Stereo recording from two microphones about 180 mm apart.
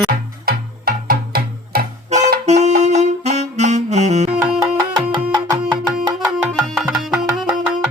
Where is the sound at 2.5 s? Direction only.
40° right (ahead or behind).